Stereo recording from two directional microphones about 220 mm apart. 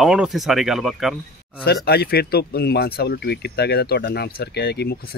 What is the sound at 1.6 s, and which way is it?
Speech, 45° left (ahead or behind).